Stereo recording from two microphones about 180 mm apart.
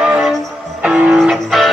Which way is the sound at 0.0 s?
5° right (ahead or behind).